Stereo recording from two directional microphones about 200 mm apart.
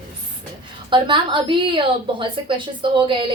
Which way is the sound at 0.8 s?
25° right (ahead or behind).